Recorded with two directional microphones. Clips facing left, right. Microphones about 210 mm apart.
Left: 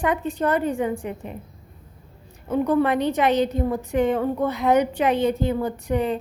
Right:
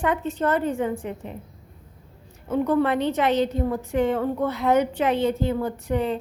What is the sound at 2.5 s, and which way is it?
A woman's voice, 10° left (ahead or behind).